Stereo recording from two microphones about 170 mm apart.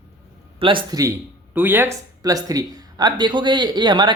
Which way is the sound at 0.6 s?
30° right (ahead or behind).